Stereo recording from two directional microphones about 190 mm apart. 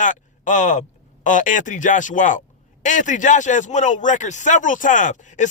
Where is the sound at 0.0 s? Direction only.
40° left (ahead or behind).